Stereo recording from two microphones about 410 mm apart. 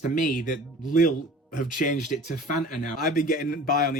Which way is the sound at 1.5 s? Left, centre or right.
Centre.